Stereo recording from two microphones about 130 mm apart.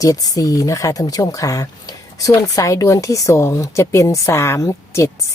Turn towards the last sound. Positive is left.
turn(degrees=25)  # may be behind; listen again after turning